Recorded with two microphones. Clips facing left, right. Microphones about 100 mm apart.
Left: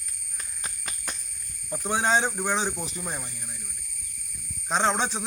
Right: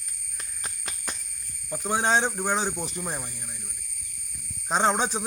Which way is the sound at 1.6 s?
Centre (ahead or behind).